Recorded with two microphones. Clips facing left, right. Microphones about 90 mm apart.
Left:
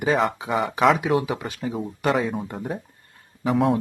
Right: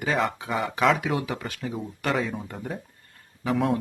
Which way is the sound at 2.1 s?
5° left (ahead or behind).